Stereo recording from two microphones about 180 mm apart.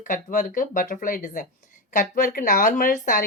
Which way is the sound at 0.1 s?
45° left (ahead or behind).